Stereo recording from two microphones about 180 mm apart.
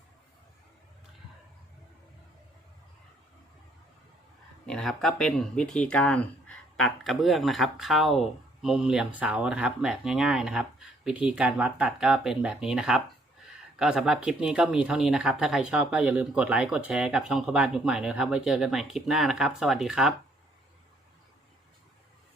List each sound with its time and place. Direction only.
4.6 s speech: 5° left (ahead or behind)